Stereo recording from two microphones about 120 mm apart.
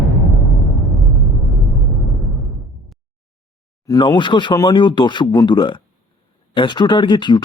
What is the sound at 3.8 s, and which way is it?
Speech, 30° left (ahead or behind).